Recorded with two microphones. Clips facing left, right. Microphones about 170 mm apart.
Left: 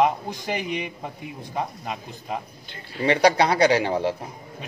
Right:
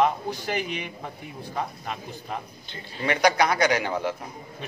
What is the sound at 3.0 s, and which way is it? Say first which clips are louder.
Speech: left 3 dB; 30° left (ahead or behind).